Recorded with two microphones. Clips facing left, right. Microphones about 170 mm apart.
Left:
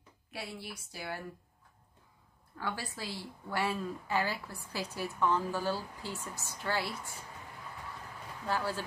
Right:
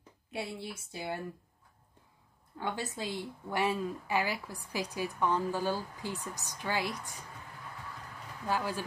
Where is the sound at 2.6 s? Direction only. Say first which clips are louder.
Right 3 dB; 20° right (ahead or behind).